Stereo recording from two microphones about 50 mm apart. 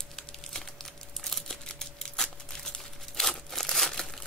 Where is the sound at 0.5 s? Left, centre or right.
Centre.